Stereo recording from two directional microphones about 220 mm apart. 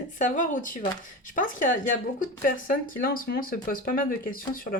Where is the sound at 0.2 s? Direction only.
35° left (ahead or behind).